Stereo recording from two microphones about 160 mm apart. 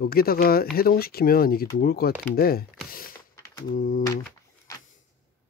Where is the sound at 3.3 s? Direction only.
15° left (ahead or behind).